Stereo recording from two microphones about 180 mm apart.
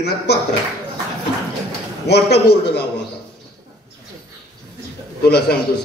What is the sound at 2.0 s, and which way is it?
Speech, 65° left (ahead or behind).